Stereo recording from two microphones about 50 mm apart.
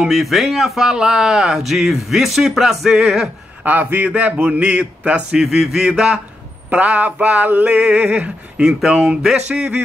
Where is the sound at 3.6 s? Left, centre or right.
Right; by 5.3 s centre.